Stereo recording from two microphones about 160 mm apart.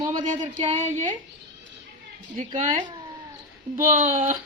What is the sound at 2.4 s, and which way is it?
A woman's voice, 50° right (ahead or behind).